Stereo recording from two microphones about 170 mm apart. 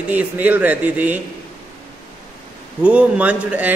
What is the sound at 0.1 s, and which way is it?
A man's voice, 10° right (ahead or behind).